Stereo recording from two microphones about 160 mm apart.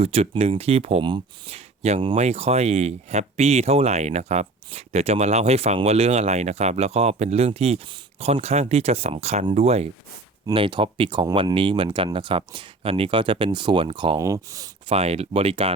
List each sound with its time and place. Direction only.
0.0 s speech: 40° right (ahead or behind)
14.2 s speech: 20° right (ahead or behind)
14.8 s speech: 40° right (ahead or behind)